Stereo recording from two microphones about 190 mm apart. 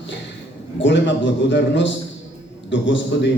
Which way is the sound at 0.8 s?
75° left (ahead or behind).